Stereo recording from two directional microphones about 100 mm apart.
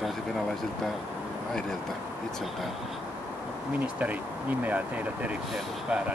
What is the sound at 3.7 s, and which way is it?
Speech, 15° right (ahead or behind).